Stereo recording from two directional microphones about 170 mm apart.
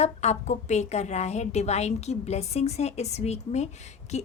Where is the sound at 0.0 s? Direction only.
40° left (ahead or behind).